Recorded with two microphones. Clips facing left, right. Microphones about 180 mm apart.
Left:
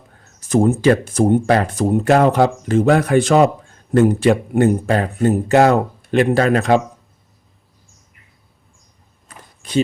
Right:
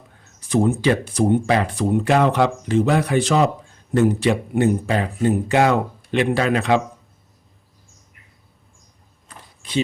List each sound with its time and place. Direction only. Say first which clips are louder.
0.3 s speech: left 3 dB; 45° left (ahead or behind)